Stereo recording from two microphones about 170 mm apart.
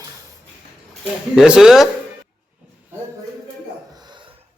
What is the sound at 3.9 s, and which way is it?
Dog, 25° right (ahead or behind).